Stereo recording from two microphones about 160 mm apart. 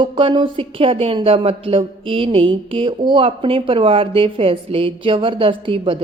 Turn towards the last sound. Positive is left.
turn(degrees=-35)  # may be behind; listen again after turning